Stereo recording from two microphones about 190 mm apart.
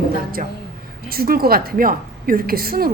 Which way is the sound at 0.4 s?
50° right (ahead or behind).